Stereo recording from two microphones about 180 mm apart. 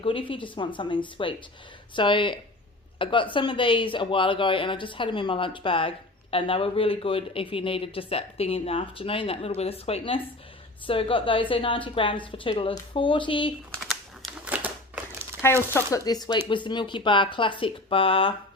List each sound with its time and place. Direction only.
0.0 s a woman's voice: 30° left (ahead or behind)
13.7 s crumpling: centre (ahead or behind)
15.4 s a woman's voice: 15° left (ahead or behind); by 18.3 s 30° left (ahead or behind)